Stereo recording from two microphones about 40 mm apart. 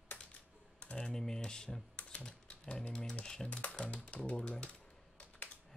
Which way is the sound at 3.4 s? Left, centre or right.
Left.